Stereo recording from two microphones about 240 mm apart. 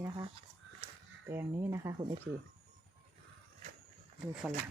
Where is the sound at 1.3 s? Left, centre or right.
Centre.